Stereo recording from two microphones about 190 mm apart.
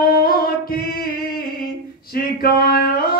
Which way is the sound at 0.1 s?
50° left (ahead or behind).